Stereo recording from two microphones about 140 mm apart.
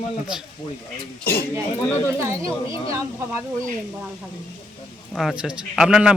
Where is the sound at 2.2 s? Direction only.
20° right (ahead or behind).